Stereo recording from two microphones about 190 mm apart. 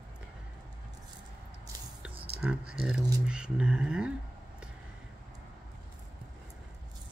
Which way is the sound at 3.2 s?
5° right (ahead or behind).